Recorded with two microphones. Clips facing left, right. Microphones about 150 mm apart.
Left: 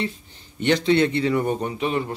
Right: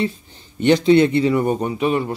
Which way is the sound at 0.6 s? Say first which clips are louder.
Right 5 dB; 15° right (ahead or behind).